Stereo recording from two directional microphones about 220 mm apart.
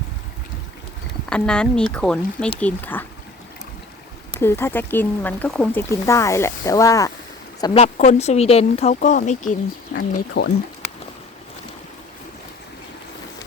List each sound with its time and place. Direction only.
1.3 s speech: 5° left (ahead or behind)
4.3 s speech: 10° left (ahead or behind)
7.6 s speech: 25° left (ahead or behind)
10.4 s speech: 50° left (ahead or behind)